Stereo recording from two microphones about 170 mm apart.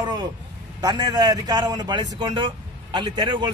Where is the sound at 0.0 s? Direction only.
25° right (ahead or behind).